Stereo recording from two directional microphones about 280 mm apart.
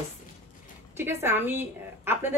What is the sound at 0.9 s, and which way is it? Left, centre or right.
A woman's voice, centre.